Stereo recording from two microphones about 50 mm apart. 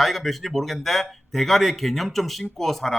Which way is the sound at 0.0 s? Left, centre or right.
Centre.